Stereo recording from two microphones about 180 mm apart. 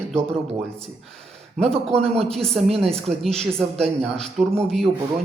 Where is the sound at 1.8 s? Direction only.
5° left (ahead or behind).